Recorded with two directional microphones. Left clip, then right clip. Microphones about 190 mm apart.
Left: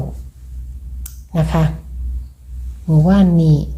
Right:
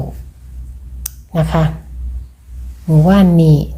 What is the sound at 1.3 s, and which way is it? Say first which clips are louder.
Speech: right 3 dB; 10° right (ahead or behind).